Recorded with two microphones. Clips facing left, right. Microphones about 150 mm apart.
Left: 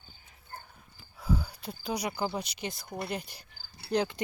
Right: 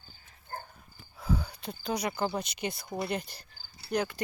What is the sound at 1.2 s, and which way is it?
Cricket, 5° left (ahead or behind).